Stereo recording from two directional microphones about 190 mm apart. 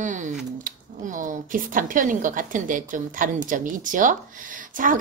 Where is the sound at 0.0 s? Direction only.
40° right (ahead or behind).